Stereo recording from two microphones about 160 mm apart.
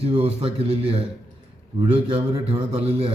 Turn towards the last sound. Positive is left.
turn(degrees=-35)  # may be behind; listen again after turning